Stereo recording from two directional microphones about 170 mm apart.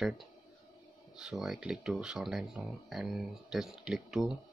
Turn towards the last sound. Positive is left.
turn(degrees=0)  # may be behind; listen again after turning